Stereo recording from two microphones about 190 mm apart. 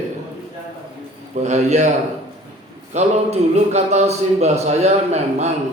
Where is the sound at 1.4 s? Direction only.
40° right (ahead or behind).